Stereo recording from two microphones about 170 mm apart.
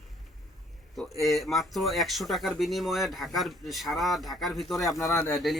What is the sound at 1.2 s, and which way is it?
Speech, centre (ahead or behind).